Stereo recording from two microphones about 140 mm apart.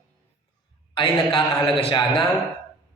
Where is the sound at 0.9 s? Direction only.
35° left (ahead or behind).